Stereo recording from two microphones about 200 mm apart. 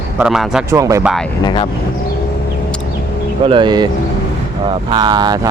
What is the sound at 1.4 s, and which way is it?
Speech, 20° left (ahead or behind).